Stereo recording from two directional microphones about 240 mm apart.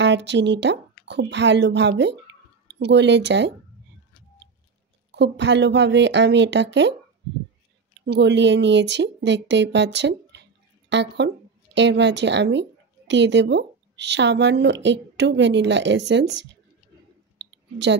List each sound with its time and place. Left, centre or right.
0.0 s a woman's voice: right
5.1 s speech: right
8.0 s a woman's voice: right
17.4 s a sound: right